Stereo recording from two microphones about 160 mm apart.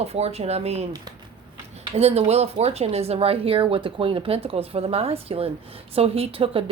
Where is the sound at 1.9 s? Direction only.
40° right (ahead or behind).